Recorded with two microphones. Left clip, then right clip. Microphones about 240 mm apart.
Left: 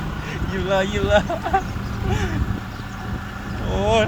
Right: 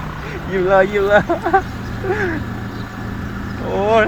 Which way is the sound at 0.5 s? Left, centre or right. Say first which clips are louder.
Right 8 dB; right.